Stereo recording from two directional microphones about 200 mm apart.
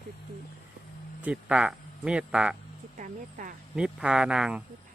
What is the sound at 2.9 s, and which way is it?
Speech, 40° right (ahead or behind).